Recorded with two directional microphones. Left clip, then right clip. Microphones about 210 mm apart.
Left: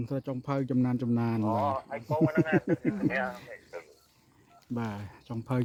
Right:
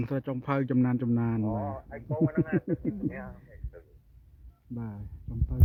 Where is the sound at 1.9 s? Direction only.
15° right (ahead or behind).